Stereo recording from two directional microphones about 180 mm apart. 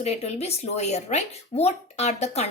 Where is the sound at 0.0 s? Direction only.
35° left (ahead or behind).